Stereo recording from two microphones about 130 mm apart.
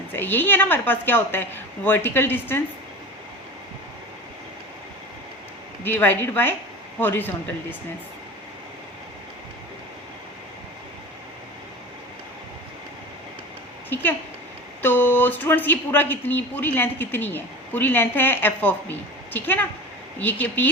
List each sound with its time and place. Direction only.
0.1 s speech: 15° left (ahead or behind)
5.8 s speech: 15° left (ahead or behind)
13.9 s speech: 15° left (ahead or behind)